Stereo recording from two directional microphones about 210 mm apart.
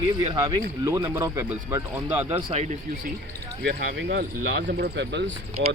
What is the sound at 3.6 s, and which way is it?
Speech, 55° right (ahead or behind).